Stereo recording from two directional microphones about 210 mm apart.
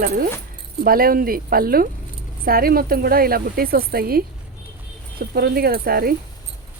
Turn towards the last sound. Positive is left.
turn(degrees=-45)  # may be behind; listen again after turning